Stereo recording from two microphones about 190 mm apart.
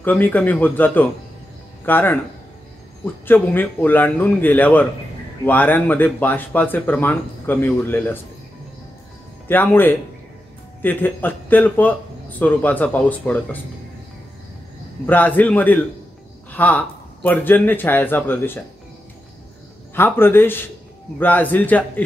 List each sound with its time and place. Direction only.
0.0 s speech: 10° left (ahead or behind)
3.3 s speech: 10° left (ahead or behind)
9.5 s speech: 10° left (ahead or behind)
15.0 s speech: 10° left (ahead or behind)
19.9 s speech: 10° left (ahead or behind)